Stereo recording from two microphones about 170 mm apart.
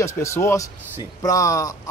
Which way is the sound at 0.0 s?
15° left (ahead or behind).